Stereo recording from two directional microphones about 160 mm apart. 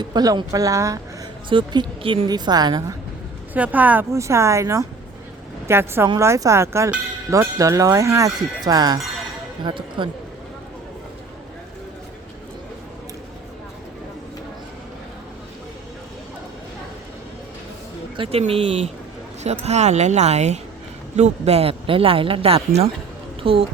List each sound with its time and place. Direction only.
0.0 s speech: 25° right (ahead or behind)
3.5 s speech: 10° right (ahead or behind); by 10.1 s 30° right (ahead or behind)
18.2 s a woman's voice: 40° right (ahead or behind)